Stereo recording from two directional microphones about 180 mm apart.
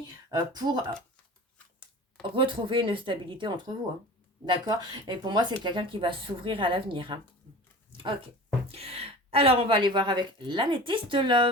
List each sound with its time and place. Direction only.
0.3 s a woman's voice: 20° right (ahead or behind)
2.3 s a woman's voice: 25° right (ahead or behind)
8.7 s a woman's voice: 35° right (ahead or behind)